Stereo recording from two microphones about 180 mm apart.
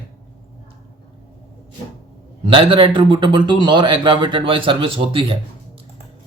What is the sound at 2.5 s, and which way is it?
Speech, 30° right (ahead or behind).